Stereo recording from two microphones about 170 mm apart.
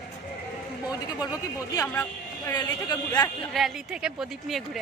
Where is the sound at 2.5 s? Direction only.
25° left (ahead or behind).